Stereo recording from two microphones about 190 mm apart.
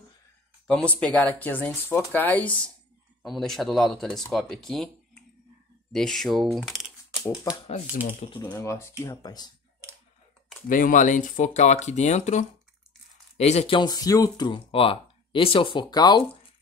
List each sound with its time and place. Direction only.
0.7 s speech: 5° left (ahead or behind)
8.4 s speech: 15° left (ahead or behind)
10.7 s speech: 45° left (ahead or behind); by 16.3 s 25° left (ahead or behind)